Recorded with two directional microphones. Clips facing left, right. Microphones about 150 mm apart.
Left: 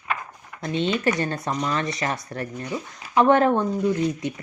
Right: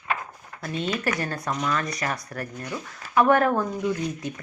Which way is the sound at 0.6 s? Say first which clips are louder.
Left 4 dB; 25° left (ahead or behind).